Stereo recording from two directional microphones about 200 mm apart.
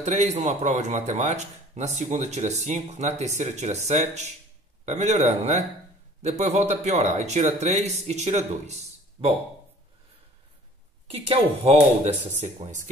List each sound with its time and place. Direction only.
0.0 s a man's voice: 35° right (ahead or behind)
11.1 s a man's voice: 30° right (ahead or behind)